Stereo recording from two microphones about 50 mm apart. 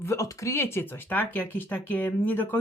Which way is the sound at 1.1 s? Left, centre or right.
Left.